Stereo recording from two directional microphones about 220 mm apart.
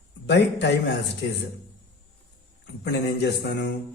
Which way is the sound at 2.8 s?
50° left (ahead or behind).